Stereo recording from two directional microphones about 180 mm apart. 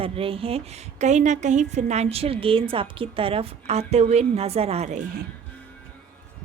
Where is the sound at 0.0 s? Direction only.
30° right (ahead or behind).